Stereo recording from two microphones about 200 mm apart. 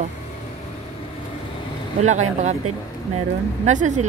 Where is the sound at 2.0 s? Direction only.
35° right (ahead or behind).